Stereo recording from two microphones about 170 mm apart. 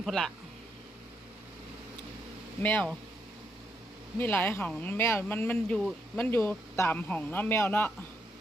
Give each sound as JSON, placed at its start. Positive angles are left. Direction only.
{"t": 0.0, "sound": "speech", "side_deg": 0}
{"t": 2.6, "sound": "speech", "side_deg": 10}
{"t": 4.2, "sound": "speech", "side_deg": 10}